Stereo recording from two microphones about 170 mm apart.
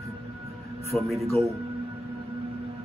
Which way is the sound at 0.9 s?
Centre (ahead or behind).